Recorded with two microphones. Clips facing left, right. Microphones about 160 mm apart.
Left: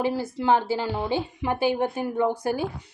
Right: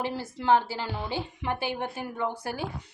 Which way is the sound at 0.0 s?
15° left (ahead or behind).